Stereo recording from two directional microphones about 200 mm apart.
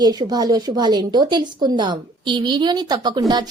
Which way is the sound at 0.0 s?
20° right (ahead or behind).